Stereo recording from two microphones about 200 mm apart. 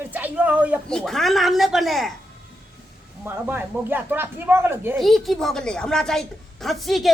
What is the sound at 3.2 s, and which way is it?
Speech, 10° right (ahead or behind).